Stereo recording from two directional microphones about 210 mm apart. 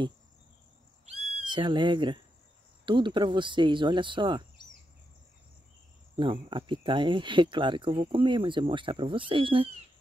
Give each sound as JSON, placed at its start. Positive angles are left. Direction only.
{"t": 1.0, "sound": "owl", "side_deg": -25}
{"t": 2.8, "sound": "speech", "side_deg": -20}
{"t": 6.1, "sound": "speech", "side_deg": -25}